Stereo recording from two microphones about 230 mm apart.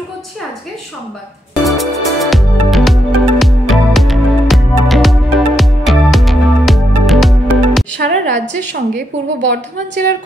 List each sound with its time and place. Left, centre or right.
1.6 s music: centre
8.0 s a woman's voice: right